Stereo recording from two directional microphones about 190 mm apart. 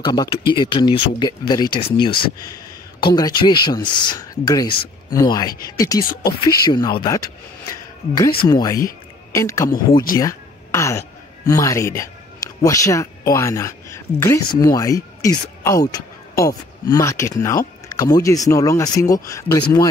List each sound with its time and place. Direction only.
0.0 s speech: 25° left (ahead or behind)
8.5 s speech: 20° left (ahead or behind)